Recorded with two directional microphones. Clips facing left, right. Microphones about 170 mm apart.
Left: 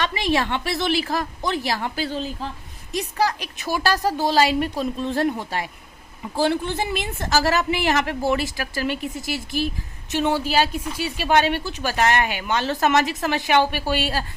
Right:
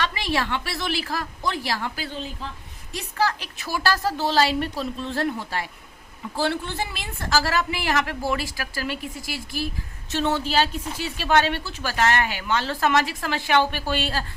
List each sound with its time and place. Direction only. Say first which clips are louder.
0.0 s a woman's voice: left 3 dB; 20° left (ahead or behind)